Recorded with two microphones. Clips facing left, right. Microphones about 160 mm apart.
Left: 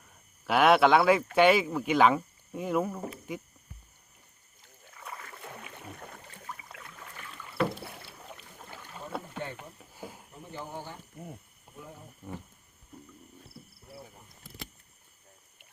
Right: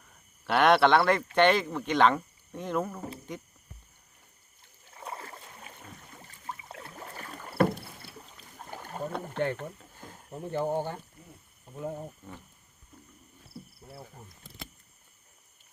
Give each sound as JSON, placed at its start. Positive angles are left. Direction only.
{"t": 0.4, "sound": "speech", "side_deg": 5}
{"t": 4.9, "sound": "boat", "side_deg": -30}
{"t": 5.7, "sound": "boat", "side_deg": 60}
{"t": 6.5, "sound": "rowboat", "side_deg": -30}
{"t": 9.6, "sound": "a sound", "side_deg": 10}
{"t": 10.4, "sound": "speech", "side_deg": -55}